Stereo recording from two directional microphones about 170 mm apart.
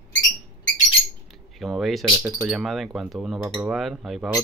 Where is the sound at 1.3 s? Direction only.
Centre (ahead or behind).